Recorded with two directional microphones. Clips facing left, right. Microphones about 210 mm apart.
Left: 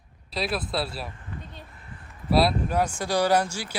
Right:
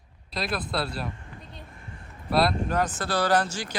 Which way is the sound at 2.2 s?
5° left (ahead or behind).